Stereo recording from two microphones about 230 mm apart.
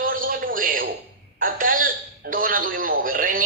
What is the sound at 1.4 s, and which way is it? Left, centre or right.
A woman's voice, right.